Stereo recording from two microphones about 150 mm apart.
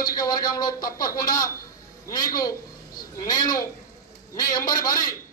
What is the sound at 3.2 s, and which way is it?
A man's voice, 25° left (ahead or behind).